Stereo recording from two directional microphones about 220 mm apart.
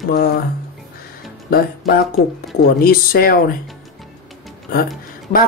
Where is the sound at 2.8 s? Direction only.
40° left (ahead or behind).